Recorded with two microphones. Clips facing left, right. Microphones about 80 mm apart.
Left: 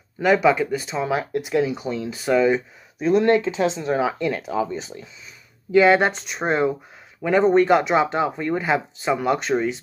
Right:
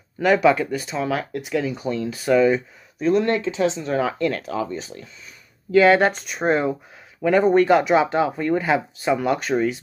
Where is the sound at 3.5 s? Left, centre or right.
Left.